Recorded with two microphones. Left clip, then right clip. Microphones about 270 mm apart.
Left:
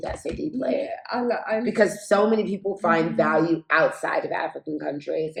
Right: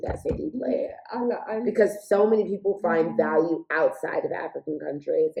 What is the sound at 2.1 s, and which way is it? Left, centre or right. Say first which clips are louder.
Speech: even; centre.